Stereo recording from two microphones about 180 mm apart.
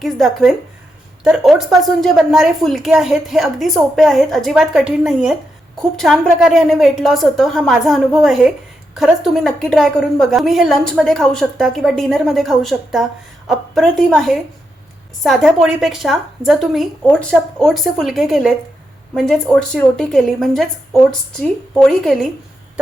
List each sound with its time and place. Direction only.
0.0 s a woman's voice: centre (ahead or behind)